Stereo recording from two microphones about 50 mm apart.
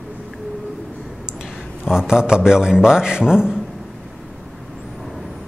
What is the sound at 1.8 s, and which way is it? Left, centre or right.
A man's voice, centre.